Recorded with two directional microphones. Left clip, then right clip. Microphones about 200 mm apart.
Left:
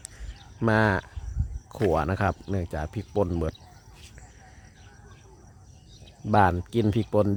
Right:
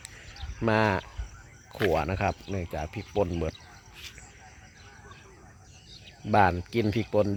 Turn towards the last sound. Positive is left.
turn(degrees=20)  # may be behind; listen again after turning